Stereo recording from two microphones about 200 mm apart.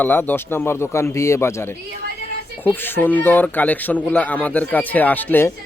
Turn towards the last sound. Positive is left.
turn(degrees=10)  # may be behind; listen again after turning